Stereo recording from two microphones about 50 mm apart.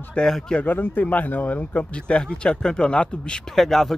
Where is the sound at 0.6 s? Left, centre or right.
Left; by 3.4 s centre.